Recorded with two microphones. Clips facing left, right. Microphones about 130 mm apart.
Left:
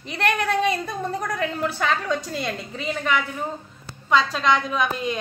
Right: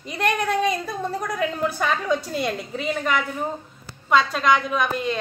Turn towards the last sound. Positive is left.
turn(degrees=0)  # may be behind; listen again after turning